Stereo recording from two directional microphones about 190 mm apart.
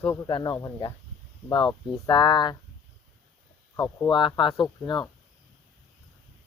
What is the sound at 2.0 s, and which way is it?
Speech, 25° left (ahead or behind).